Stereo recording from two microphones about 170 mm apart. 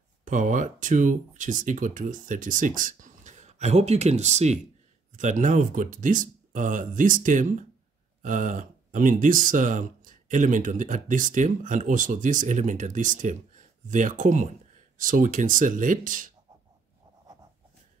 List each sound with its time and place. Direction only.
0.2 s speech: 50° right (ahead or behind)